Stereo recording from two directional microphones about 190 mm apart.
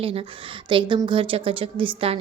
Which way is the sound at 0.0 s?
30° right (ahead or behind).